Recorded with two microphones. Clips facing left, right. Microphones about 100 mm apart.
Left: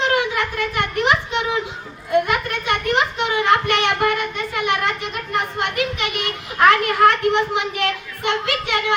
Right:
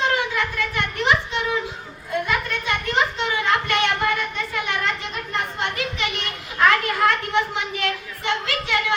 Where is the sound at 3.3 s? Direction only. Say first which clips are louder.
Left 4 dB; 55° left (ahead or behind).